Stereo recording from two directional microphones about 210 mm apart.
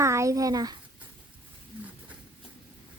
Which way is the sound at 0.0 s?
15° right (ahead or behind).